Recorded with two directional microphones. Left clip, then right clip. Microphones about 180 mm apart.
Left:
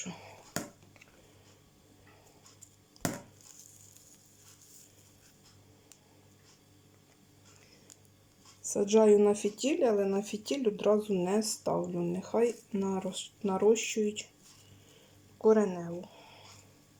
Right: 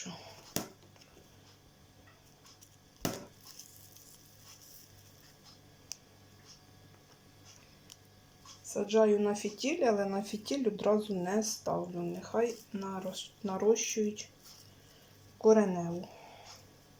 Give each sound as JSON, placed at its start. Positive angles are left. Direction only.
{"t": 8.6, "sound": "speech", "side_deg": 35}
{"t": 15.4, "sound": "speech", "side_deg": 0}